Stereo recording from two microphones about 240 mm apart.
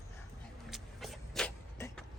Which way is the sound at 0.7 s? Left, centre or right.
Centre.